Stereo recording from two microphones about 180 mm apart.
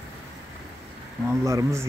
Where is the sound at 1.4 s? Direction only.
15° right (ahead or behind).